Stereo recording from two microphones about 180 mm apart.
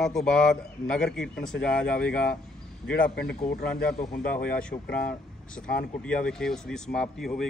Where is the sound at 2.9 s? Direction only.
60° left (ahead or behind).